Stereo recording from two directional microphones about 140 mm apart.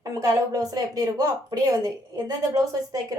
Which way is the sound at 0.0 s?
25° right (ahead or behind).